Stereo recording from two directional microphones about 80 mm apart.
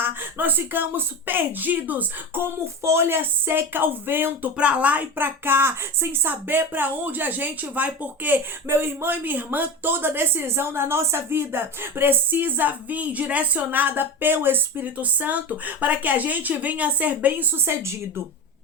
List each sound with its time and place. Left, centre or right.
0.0 s speech: right
2.8 s speech: right
4.5 s speech: centre
17.7 s a woman's voice: right